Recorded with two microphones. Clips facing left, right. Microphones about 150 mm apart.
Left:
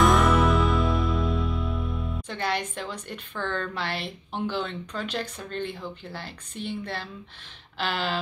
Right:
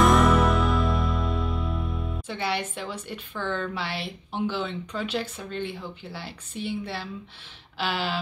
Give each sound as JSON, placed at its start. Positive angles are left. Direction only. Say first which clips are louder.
{"t": 0.0, "sound": "music", "louder": "right 1 dB", "side_deg": 0}
{"t": 3.8, "sound": "a woman's voice", "louder": "left 1 dB", "side_deg": 50}
{"t": 4.3, "sound": "speech", "louder": "right 1 dB", "side_deg": -10}